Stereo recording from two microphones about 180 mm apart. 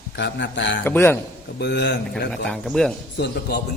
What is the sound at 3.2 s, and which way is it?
Speech, 65° left (ahead or behind).